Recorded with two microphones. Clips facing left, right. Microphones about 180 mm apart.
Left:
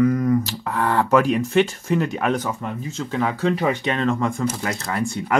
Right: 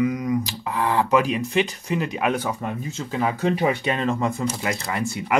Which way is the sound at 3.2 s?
20° right (ahead or behind).